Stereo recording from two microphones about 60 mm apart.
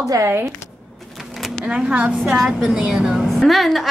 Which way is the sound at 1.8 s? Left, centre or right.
Centre.